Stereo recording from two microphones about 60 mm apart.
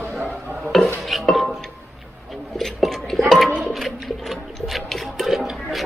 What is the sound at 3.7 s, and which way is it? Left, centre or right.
Water, centre.